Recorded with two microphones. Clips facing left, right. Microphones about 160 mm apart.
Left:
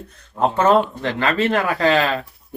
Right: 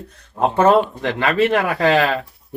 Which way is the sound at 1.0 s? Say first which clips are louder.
Right 2 dB; 10° right (ahead or behind).